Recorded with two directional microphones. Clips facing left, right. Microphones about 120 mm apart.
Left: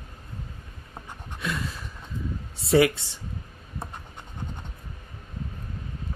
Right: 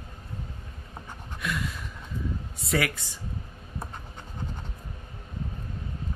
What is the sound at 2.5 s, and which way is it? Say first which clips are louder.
Speech: left 9 dB; 30° left (ahead or behind).